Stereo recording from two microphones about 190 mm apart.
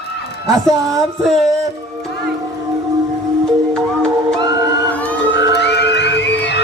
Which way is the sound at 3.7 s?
5° left (ahead or behind).